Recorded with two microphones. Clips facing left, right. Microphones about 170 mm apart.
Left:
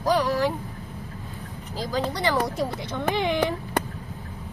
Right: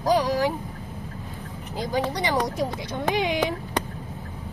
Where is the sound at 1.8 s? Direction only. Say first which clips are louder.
Right 1 dB; 20° right (ahead or behind).